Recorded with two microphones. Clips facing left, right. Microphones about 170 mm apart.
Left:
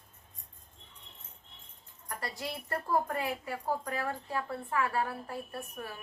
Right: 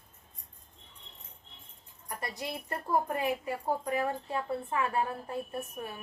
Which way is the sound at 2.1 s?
20° right (ahead or behind).